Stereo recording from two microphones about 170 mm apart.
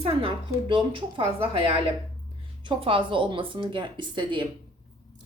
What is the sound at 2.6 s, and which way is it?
A woman's voice, 30° right (ahead or behind).